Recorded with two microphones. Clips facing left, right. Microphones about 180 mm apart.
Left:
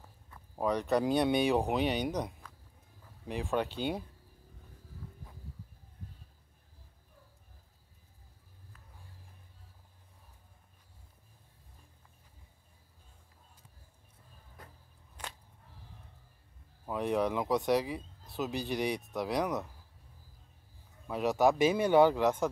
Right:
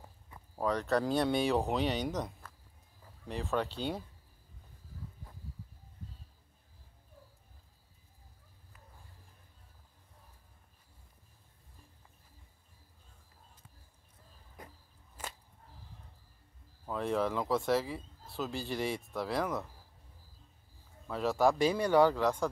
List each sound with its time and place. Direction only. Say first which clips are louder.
0.6 s speech: left 1 dB; 15° left (ahead or behind)
3.3 s speech: left 1 dB; 15° left (ahead or behind)
14.6 s a sound: right 4 dB; 10° right (ahead or behind)
16.8 s speech: left 2 dB; 15° left (ahead or behind)
21.1 s speech: left 1 dB; 20° left (ahead or behind)